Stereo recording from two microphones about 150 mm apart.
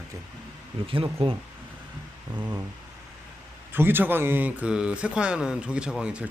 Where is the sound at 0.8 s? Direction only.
35° right (ahead or behind).